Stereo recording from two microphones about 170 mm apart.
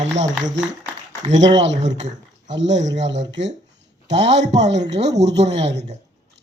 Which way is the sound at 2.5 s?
90° right.